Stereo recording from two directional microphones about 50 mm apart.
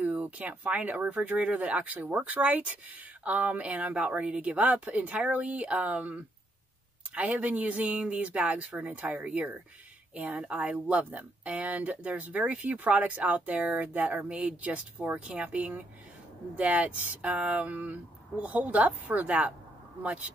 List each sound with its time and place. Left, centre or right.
0.0 s speech: right